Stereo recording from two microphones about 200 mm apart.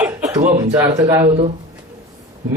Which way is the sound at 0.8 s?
15° right (ahead or behind).